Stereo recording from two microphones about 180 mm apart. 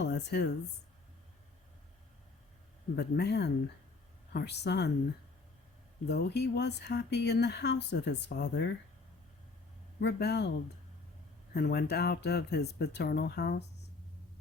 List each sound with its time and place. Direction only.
0.0 s speech: 70° left (ahead or behind)
2.9 s speech: 65° left (ahead or behind)
6.1 s speech: 65° left (ahead or behind)
10.0 s speech: 65° left (ahead or behind)
11.5 s speech: 60° left (ahead or behind)